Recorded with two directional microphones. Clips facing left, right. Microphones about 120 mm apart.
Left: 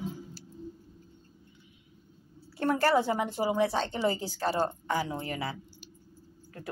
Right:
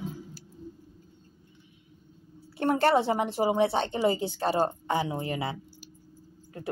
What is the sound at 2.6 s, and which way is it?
A woman's voice, 20° right (ahead or behind).